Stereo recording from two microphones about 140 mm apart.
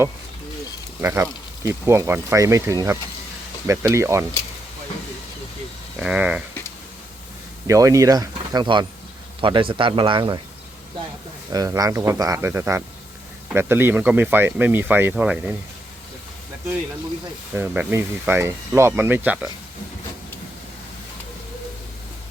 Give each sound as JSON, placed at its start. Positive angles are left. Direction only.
{"t": 1.0, "sound": "speech", "side_deg": -20}
{"t": 6.0, "sound": "speech", "side_deg": -5}
{"t": 7.7, "sound": "a man's voice", "side_deg": -25}
{"t": 11.5, "sound": "speech", "side_deg": -25}
{"t": 17.5, "sound": "speech", "side_deg": -15}